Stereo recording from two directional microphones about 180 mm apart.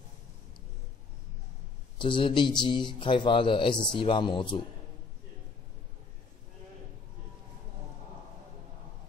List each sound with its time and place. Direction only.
2.0 s speech: 30° left (ahead or behind)